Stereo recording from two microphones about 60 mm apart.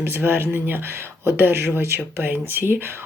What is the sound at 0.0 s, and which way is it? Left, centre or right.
Speech, right.